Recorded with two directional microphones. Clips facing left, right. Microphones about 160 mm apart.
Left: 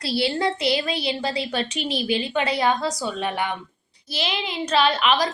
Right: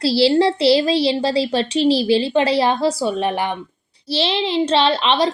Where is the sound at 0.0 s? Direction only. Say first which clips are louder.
Right 9 dB; 30° right (ahead or behind).